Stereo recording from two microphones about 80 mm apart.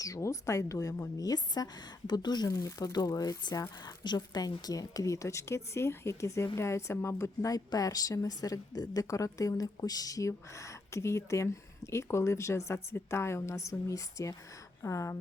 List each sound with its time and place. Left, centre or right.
0.0 s speech: left
1.2 s a woman's voice: left
2.5 s a woman's voice: left
7.4 s a woman's voice: left